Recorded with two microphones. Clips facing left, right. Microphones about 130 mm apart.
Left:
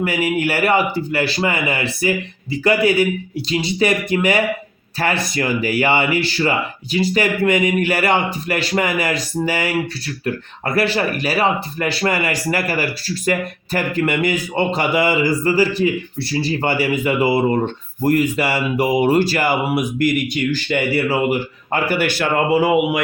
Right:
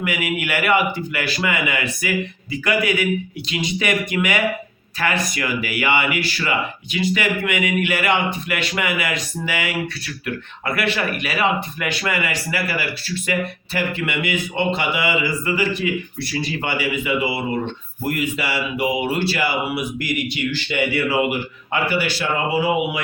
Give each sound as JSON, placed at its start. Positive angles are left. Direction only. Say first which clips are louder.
{"t": 0.0, "sound": "speech", "louder": "left 5 dB", "side_deg": 35}
{"t": 10.8, "sound": "speech", "louder": "left 5 dB", "side_deg": 35}